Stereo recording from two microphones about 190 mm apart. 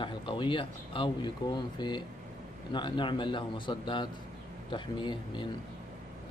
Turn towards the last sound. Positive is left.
turn(degrees=25)  # may be behind; listen again after turning